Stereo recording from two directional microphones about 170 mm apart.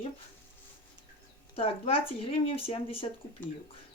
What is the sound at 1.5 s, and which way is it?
A woman's voice, 35° left (ahead or behind).